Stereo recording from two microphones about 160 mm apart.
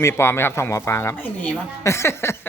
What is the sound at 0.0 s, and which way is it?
A woman's voice, 15° left (ahead or behind).